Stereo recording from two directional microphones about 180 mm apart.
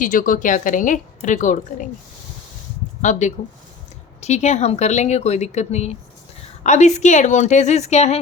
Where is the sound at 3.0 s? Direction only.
40° left (ahead or behind).